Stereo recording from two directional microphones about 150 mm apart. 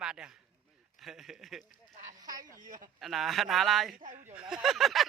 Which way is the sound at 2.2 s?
25° right (ahead or behind).